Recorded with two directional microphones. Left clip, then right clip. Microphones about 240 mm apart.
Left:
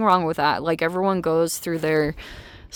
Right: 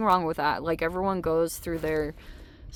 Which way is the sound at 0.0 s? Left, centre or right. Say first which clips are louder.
Left 5 dB; left.